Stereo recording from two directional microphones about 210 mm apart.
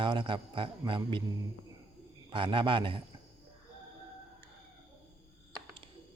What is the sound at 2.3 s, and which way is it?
Speech, 25° right (ahead or behind).